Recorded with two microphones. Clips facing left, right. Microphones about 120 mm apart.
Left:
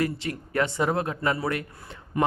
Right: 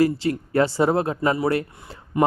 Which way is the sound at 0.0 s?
30° right (ahead or behind).